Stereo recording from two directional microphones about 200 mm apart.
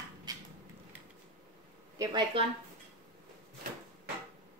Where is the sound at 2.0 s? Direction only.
20° right (ahead or behind).